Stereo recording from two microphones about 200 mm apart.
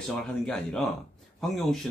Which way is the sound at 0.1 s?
Centre (ahead or behind).